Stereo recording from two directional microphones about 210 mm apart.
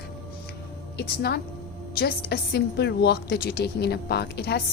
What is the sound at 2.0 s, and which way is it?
A woman's voice, 50° left (ahead or behind).